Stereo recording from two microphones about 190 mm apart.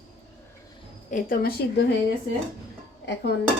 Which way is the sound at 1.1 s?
50° left (ahead or behind).